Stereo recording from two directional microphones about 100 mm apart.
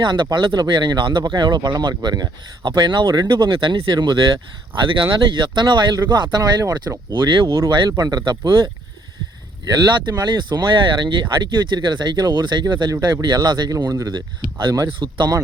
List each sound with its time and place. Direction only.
0.0 s speech: 50° right (ahead or behind)
7.1 s speech: 50° right (ahead or behind)
7.4 s speech: 35° right (ahead or behind)
7.7 s speech: 45° right (ahead or behind)
14.9 s speech: 55° right (ahead or behind)